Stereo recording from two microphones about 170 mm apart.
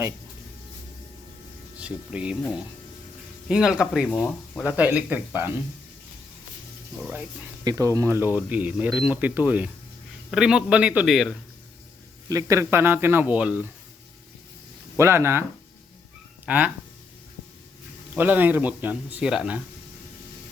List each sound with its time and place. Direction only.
1.8 s speech: 5° right (ahead or behind)
3.5 s a man's voice: 5° right (ahead or behind)
7.6 s a man's voice: 20° right (ahead or behind); by 11.3 s centre (ahead or behind)
12.3 s speech: 20° right (ahead or behind)
14.9 s speech: 15° right (ahead or behind)
16.5 s speech: 10° right (ahead or behind)
18.1 s speech: 10° right (ahead or behind)